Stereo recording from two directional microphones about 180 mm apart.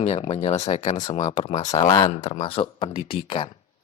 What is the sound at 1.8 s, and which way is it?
Speech, 30° left (ahead or behind).